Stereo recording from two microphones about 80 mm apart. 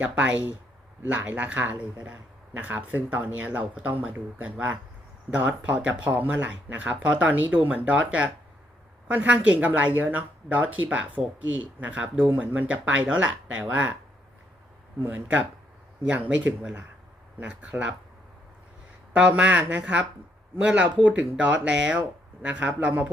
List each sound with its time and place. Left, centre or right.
0.0 s speech: centre
15.0 s speech: right
19.1 s speech: centre